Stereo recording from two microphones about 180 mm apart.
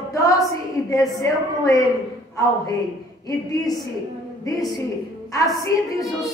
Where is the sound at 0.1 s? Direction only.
20° left (ahead or behind).